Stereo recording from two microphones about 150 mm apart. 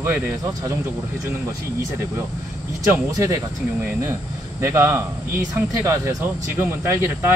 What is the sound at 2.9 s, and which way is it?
Speech, 20° right (ahead or behind).